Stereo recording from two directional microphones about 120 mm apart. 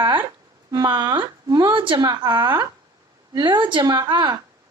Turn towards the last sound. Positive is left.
turn(degrees=-35)  # may be behind; listen again after turning